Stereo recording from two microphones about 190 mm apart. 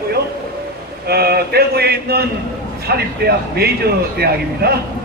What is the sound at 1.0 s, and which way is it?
A man's voice, 55° right (ahead or behind).